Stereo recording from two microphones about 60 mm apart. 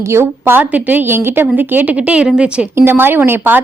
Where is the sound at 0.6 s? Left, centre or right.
Right.